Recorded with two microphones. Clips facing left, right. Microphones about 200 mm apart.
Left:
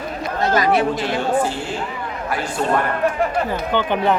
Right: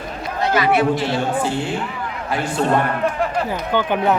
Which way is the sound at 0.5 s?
40° left (ahead or behind).